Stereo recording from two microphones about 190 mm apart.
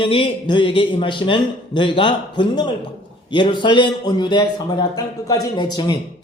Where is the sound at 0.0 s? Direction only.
25° left (ahead or behind).